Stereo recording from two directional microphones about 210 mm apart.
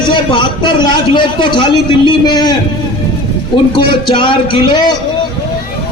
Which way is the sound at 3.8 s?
25° left (ahead or behind).